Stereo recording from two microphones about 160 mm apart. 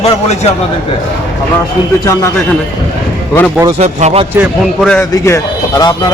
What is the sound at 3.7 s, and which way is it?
Speech, 45° right (ahead or behind).